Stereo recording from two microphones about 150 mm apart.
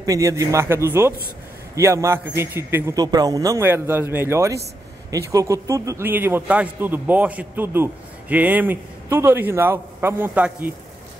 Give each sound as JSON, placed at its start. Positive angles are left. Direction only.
{"t": 0.0, "sound": "a man's voice", "side_deg": -20}